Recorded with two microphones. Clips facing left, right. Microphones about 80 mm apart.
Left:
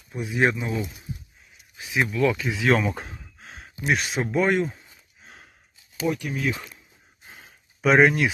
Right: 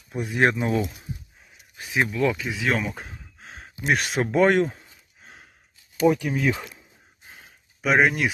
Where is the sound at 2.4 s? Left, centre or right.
Centre.